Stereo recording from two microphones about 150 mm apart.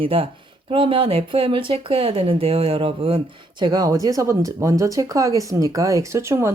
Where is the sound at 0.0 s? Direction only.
35° right (ahead or behind).